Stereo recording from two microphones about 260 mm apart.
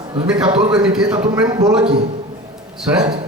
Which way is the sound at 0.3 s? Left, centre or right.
Centre.